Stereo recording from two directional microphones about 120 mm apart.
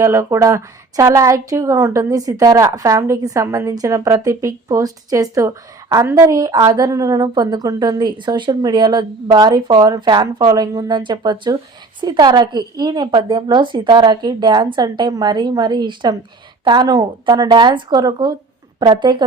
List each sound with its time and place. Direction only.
0.0 s a woman's voice: 25° right (ahead or behind); by 19.2 s 40° right (ahead or behind)